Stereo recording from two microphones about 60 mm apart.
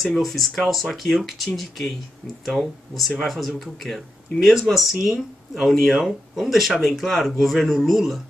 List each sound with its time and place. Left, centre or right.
0.0 s speech: centre